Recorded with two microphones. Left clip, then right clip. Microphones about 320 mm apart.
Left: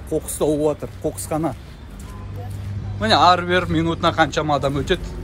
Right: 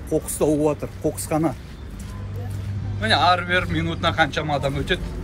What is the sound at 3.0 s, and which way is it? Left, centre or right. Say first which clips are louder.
Speech: left 4 dB; centre.